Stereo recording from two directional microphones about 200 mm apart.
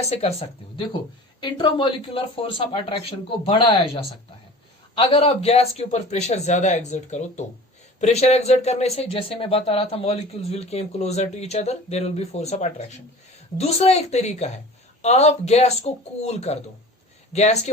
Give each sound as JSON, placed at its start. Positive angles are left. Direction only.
{"t": 0.0, "sound": "speech", "side_deg": 30}